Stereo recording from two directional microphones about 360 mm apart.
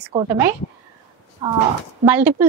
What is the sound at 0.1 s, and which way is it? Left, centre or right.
Speech, centre.